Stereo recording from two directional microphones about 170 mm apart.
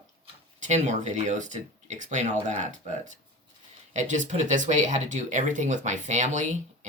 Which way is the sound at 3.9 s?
45° right (ahead or behind).